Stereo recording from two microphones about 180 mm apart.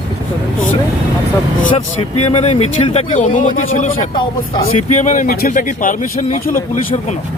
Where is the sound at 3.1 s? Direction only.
45° left (ahead or behind).